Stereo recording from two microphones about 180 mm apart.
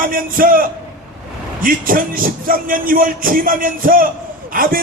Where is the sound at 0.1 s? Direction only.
50° right (ahead or behind).